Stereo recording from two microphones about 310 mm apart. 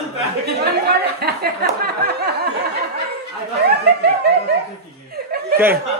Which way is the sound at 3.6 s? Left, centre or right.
Right.